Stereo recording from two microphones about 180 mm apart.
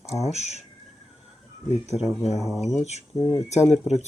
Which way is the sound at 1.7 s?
35° left (ahead or behind).